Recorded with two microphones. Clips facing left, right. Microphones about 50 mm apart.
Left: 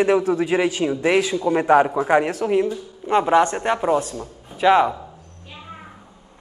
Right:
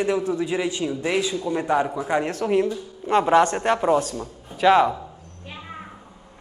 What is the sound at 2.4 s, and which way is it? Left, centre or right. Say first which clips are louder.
A woman's voice: left 1 dB; centre.